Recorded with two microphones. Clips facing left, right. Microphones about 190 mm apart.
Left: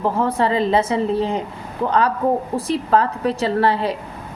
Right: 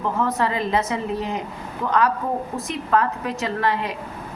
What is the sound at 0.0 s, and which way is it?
A woman's voice, 30° left (ahead or behind).